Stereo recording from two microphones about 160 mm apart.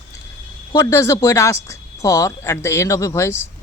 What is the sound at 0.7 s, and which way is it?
Speech, 20° left (ahead or behind).